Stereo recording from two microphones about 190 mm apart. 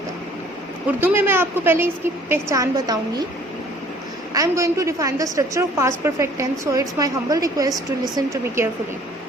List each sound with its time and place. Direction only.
0.9 s a woman's voice: 10° right (ahead or behind)
4.4 s a woman's voice: 15° right (ahead or behind)